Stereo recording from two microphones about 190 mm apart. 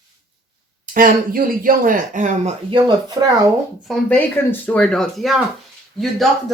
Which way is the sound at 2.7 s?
20° right (ahead or behind).